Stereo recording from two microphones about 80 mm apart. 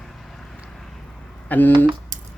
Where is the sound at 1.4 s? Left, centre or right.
Left.